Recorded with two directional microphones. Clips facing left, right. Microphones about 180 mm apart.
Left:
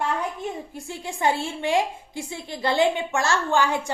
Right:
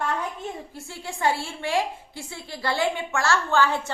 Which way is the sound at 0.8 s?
20° left (ahead or behind).